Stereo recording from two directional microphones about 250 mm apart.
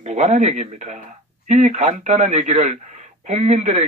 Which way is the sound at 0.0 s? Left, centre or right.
Right.